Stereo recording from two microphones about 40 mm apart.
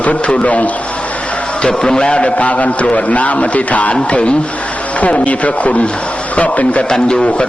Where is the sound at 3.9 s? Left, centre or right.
Left.